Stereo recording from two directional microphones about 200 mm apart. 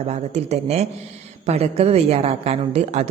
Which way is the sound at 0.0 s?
30° right (ahead or behind).